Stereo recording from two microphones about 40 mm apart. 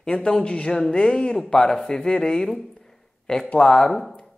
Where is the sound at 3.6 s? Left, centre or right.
Centre.